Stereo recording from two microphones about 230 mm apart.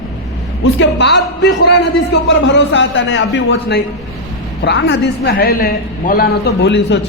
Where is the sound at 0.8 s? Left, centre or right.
Left.